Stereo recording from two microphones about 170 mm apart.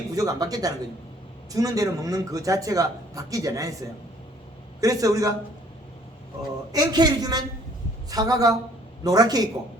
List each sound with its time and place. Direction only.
0.2 s a man's voice: 20° right (ahead or behind)
6.7 s a man's voice: 25° right (ahead or behind)